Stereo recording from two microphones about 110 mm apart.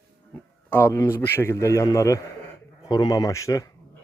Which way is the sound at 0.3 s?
20° left (ahead or behind).